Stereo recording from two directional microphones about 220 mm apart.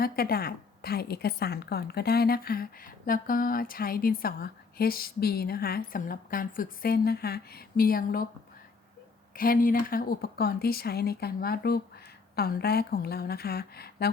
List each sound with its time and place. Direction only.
0.0 s a woman's voice: 45° left (ahead or behind)
9.3 s a woman's voice: 40° left (ahead or behind)